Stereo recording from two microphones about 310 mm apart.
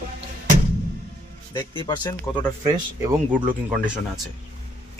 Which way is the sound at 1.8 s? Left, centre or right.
Centre.